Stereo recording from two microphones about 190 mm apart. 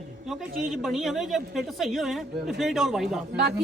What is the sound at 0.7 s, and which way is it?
Speech, centre (ahead or behind).